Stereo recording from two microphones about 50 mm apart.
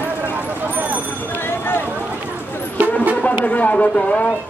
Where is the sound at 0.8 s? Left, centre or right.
Right.